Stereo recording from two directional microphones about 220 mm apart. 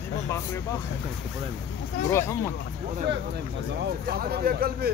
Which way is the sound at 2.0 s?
10° left (ahead or behind).